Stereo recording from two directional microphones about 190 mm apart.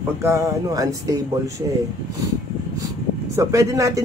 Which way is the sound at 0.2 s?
15° right (ahead or behind).